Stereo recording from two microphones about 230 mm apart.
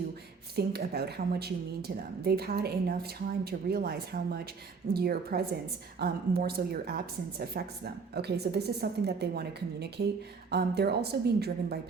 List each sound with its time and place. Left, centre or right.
0.5 s a woman's voice: right